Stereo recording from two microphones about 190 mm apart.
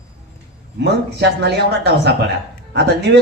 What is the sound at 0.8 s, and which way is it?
Speech, 60° right (ahead or behind).